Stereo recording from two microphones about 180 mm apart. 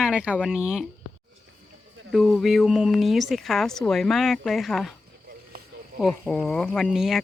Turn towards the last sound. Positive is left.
turn(degrees=0)  # may be behind; listen again after turning